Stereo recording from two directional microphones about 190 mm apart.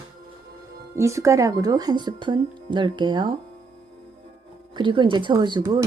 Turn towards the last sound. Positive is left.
turn(degrees=-25)  # may be behind; listen again after turning